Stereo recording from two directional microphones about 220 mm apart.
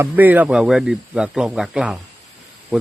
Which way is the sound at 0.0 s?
10° right (ahead or behind).